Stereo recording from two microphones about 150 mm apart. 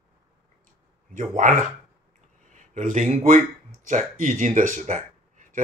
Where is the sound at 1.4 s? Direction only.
60° right (ahead or behind).